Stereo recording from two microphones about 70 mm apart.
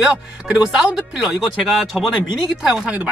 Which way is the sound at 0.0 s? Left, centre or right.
Centre.